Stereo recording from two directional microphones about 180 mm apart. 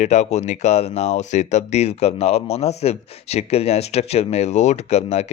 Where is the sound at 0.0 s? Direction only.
40° left (ahead or behind).